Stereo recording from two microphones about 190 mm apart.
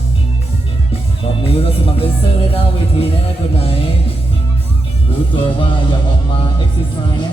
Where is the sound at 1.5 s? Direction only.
30° left (ahead or behind).